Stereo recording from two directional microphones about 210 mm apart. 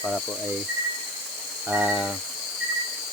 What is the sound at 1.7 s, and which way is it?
Speech, 5° right (ahead or behind).